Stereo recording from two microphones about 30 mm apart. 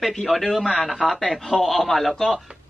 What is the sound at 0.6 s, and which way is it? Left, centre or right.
Speech, left.